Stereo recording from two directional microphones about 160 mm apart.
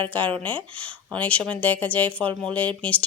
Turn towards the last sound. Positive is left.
turn(degrees=10)  # may be behind; listen again after turning